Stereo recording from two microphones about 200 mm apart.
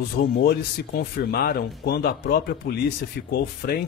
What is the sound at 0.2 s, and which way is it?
Speech, 50° left (ahead or behind).